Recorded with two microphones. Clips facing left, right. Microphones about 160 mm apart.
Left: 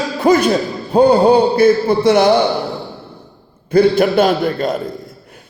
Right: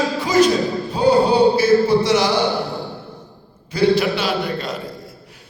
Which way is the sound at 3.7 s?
50° left (ahead or behind).